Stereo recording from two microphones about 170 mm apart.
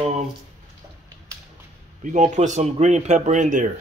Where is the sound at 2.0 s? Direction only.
45° right (ahead or behind).